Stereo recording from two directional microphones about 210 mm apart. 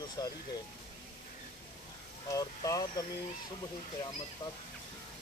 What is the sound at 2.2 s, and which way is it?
Speech, 15° left (ahead or behind).